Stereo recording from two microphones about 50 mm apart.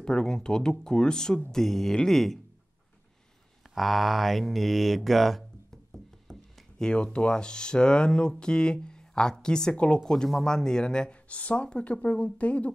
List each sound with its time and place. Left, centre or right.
0.0 s speech: centre
3.7 s speech: centre
5.9 s a sound: centre
6.8 s speech: centre